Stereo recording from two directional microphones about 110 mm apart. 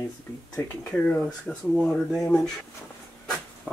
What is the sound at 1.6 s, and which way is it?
Speech, centre (ahead or behind).